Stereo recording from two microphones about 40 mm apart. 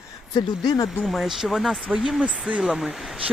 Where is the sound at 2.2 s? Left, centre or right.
Right.